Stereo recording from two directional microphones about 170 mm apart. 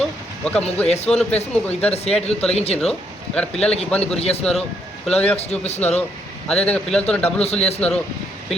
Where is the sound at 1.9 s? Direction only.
35° left (ahead or behind).